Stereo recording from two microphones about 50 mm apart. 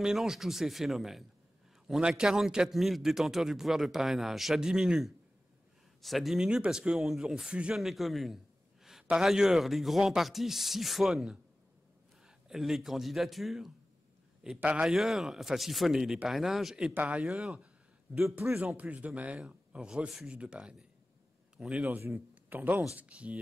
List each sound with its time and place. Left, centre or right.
0.0 s speech: centre
2.0 s a man's voice: centre
6.0 s speech: centre
6.5 s a man's voice: centre
7.7 s speech: centre
12.4 s speech: centre
14.6 s speech: right
14.9 s a man's voice: centre
18.1 s speech: right
21.9 s speech: right
22.9 s speech: right